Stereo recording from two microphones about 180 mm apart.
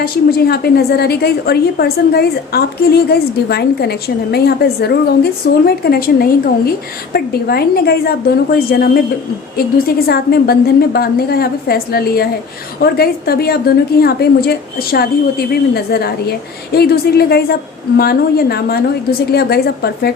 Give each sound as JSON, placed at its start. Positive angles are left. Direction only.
{"t": 0.0, "sound": "a woman's voice", "side_deg": 55}